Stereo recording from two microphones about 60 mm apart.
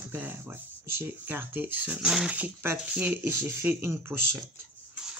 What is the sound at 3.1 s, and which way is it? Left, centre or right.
Speech, right.